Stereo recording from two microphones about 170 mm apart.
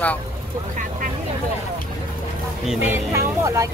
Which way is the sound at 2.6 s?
5° right (ahead or behind).